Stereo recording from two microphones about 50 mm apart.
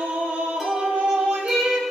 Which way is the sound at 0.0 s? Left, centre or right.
Centre.